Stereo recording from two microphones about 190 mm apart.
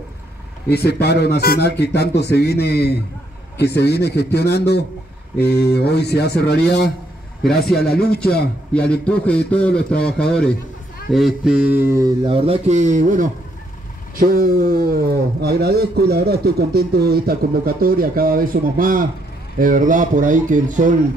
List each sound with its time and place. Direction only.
0.7 s speech: 60° left (ahead or behind)
7.6 s a man's voice: centre (ahead or behind)
7.9 s speech: 55° left (ahead or behind)
8.2 s a man's voice: 5° left (ahead or behind)
11.1 s mantra: centre (ahead or behind); by 13.3 s 45° right (ahead or behind)
14.1 s speech: 50° right (ahead or behind)